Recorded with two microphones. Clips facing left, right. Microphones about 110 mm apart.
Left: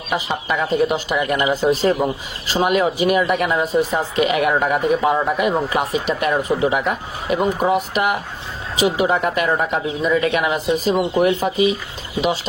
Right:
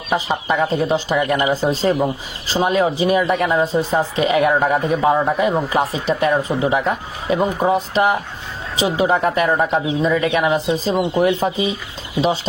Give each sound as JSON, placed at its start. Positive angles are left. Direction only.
{"t": 0.1, "sound": "speech", "side_deg": -35}